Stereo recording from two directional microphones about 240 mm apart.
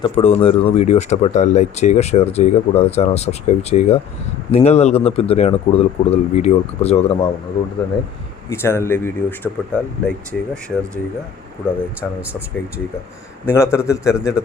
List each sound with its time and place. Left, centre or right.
0.0 s speech: left
8.4 s speech: centre
13.4 s speech: centre